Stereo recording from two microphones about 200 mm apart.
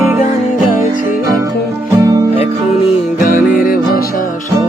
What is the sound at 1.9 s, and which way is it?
Music, 15° right (ahead or behind).